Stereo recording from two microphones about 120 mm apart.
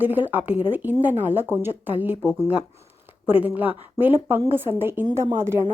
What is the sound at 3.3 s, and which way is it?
A woman's voice, 15° right (ahead or behind).